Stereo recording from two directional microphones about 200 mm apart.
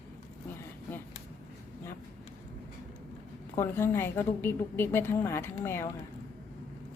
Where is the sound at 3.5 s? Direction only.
10° left (ahead or behind).